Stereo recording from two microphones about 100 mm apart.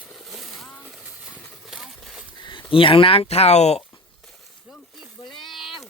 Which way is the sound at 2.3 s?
50° left (ahead or behind).